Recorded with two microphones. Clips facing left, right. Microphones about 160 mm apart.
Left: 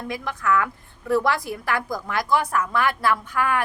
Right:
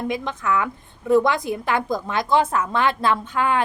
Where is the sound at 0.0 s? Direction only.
20° right (ahead or behind).